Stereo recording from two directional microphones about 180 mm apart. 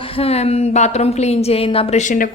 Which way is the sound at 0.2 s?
35° left (ahead or behind).